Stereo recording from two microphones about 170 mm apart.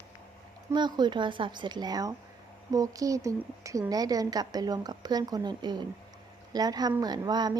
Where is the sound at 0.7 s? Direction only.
25° right (ahead or behind).